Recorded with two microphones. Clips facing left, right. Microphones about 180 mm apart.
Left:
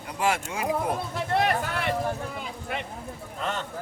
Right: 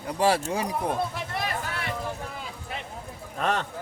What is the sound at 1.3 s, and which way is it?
Speech, 60° left (ahead or behind).